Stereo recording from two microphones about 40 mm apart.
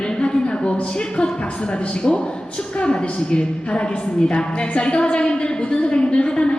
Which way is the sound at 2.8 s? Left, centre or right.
Left.